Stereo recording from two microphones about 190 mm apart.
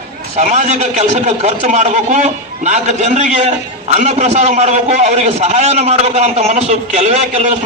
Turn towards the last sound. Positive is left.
turn(degrees=-35)  # may be behind; listen again after turning